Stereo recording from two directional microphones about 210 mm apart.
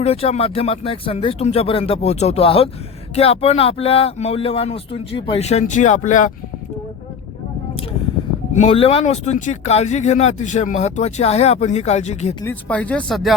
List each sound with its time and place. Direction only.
0.0 s speech: 30° left (ahead or behind)
8.5 s speech: 30° left (ahead or behind)
12.6 s speech: 5° left (ahead or behind)